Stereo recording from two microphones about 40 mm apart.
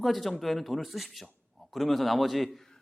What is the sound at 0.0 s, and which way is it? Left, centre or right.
Speech, centre.